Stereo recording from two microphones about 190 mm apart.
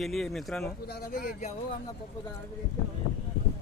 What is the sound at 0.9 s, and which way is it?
Speech, 55° left (ahead or behind).